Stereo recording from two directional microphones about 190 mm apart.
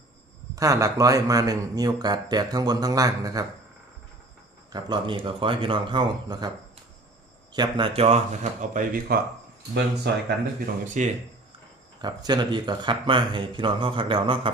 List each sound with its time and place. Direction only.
0.5 s speech: 15° right (ahead or behind)
4.7 s speech: 25° right (ahead or behind)
7.5 s speech: 25° right (ahead or behind)
8.7 s speech: 50° right (ahead or behind)
9.7 s speech: 60° right (ahead or behind)
10.8 s speech: 40° right (ahead or behind)
12.0 s speech: 20° right (ahead or behind)